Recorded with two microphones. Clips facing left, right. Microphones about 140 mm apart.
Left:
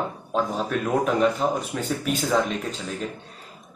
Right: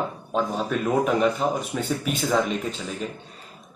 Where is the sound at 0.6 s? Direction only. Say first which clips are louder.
Right 1 dB; 5° right (ahead or behind).